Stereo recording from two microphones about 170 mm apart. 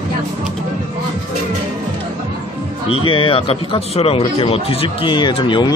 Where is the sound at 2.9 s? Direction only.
30° left (ahead or behind).